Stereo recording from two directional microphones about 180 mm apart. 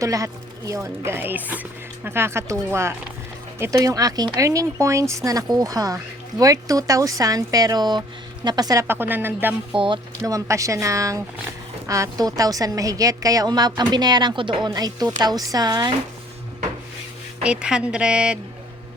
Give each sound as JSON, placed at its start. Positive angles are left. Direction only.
{"t": 0.0, "sound": "a woman's voice", "side_deg": -20}
{"t": 9.7, "sound": "a woman's voice", "side_deg": -30}
{"t": 17.4, "sound": "a woman's voice", "side_deg": -5}